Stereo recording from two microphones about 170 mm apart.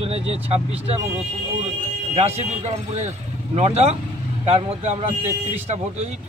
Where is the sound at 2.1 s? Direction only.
40° right (ahead or behind).